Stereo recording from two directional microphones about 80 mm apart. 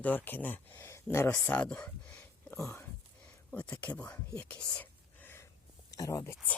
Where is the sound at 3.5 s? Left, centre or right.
Centre.